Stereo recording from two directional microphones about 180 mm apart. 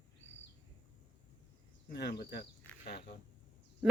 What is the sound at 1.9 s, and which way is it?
Speech, 65° left (ahead or behind).